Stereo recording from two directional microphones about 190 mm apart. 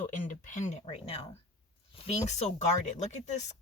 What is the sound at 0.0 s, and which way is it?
Speech, 40° left (ahead or behind).